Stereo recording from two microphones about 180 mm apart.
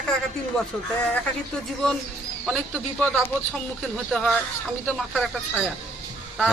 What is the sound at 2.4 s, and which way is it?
Speech, 5° left (ahead or behind).